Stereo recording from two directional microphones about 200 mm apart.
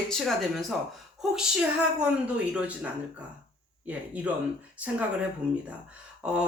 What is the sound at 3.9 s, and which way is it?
Speech, 5° right (ahead or behind).